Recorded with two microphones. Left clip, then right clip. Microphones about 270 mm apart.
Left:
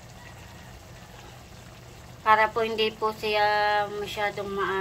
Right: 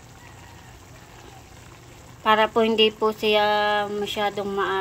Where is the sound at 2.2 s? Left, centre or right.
Right.